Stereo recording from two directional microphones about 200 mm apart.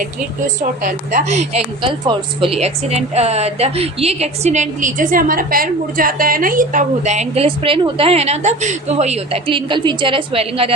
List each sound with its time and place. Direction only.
0.0 s a woman's voice: 40° right (ahead or behind)